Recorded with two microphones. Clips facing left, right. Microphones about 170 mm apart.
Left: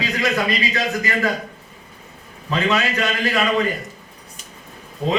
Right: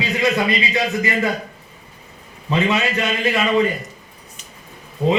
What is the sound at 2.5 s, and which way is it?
Speech, 20° right (ahead or behind).